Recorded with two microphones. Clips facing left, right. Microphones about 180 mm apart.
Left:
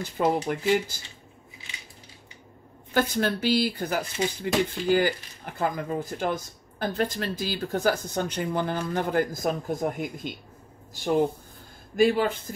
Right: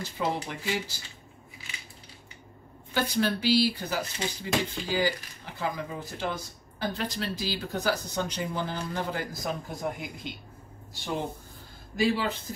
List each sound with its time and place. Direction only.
0.2 s speech: 50° left (ahead or behind)
2.9 s speech: 50° left (ahead or behind)
12.0 s speech: 50° left (ahead or behind)